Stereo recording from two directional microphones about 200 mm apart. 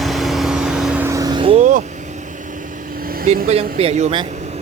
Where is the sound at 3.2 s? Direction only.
30° right (ahead or behind).